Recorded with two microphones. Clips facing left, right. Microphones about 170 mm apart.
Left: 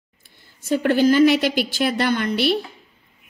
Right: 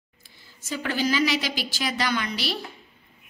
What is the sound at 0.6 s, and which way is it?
A woman's voice, 55° left (ahead or behind).